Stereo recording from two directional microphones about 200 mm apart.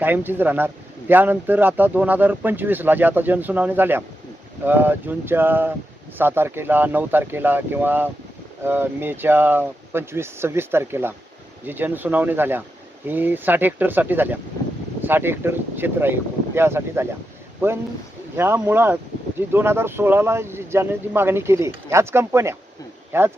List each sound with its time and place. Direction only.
0.0 s speech: 10° right (ahead or behind)